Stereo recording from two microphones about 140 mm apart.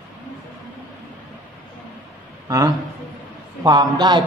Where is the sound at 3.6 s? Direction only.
30° right (ahead or behind).